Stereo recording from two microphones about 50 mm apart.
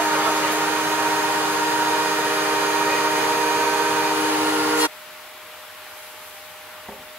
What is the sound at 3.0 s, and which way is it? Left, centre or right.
Vacuum cleaner, right.